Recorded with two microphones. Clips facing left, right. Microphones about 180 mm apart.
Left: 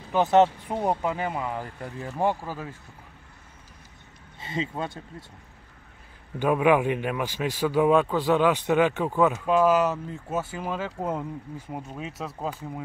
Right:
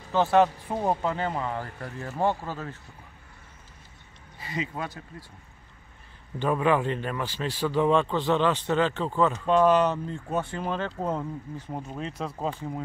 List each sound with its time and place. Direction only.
0.1 s a man's voice: 20° left (ahead or behind)
4.4 s speech: 25° left (ahead or behind)
6.4 s a man's voice: 10° left (ahead or behind)